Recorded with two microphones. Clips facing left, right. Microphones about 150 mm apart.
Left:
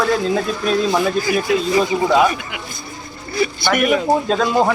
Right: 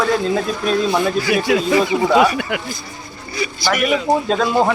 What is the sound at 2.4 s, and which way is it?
Speech, 55° right (ahead or behind).